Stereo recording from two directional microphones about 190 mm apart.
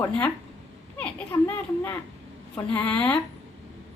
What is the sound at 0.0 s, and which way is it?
Speech, 5° left (ahead or behind).